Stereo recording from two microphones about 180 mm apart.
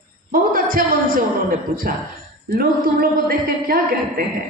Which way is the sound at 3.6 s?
55° right (ahead or behind).